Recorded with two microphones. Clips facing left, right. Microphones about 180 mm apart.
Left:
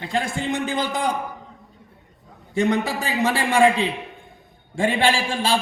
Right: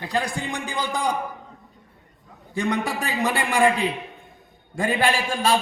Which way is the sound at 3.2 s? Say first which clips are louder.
Left 3 dB; 25° left (ahead or behind).